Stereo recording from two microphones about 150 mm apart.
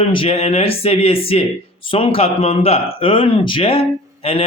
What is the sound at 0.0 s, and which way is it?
Speech, 35° left (ahead or behind).